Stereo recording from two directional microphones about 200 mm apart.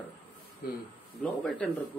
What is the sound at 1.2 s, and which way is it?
Speech, 5° left (ahead or behind).